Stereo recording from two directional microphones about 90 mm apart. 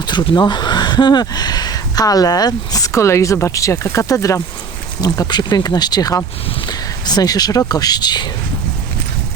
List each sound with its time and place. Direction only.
0.3 s speech: 55° left (ahead or behind)
6.7 s a sound: 50° left (ahead or behind)
7.7 s speech: 45° left (ahead or behind)